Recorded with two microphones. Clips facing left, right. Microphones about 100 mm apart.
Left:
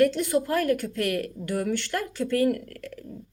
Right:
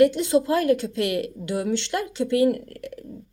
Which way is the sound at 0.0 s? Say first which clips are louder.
Right 4 dB; 20° right (ahead or behind).